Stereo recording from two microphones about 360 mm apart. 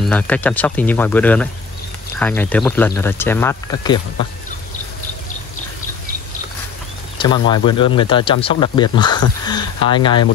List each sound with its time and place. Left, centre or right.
0.0 s speech: centre
7.2 s speech: centre